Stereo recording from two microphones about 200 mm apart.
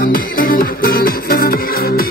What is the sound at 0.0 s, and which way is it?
Music, 45° left (ahead or behind).